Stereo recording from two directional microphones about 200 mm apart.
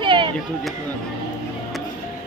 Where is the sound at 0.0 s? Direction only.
25° right (ahead or behind).